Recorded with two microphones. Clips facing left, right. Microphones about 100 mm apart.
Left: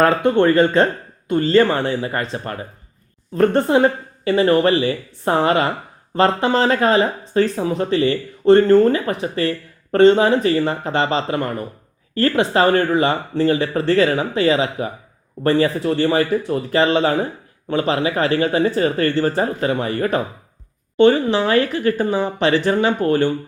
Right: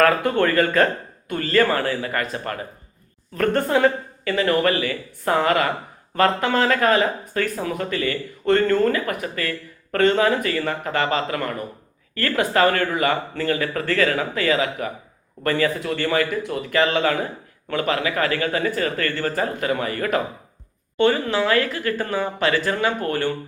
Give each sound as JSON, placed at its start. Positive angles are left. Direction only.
{"t": 0.0, "sound": "speech", "side_deg": 25}